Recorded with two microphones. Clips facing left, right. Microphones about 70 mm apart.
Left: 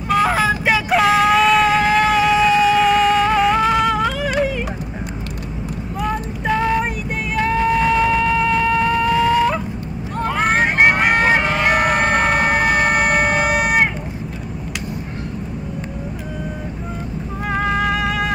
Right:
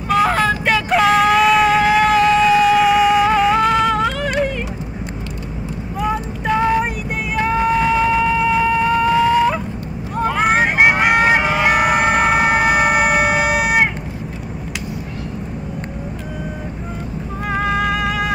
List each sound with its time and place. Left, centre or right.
0.1 s vehicle: centre
6.0 s vehicle: centre
7.3 s a sound: centre
10.1 s vehicle: centre
17.5 s music: centre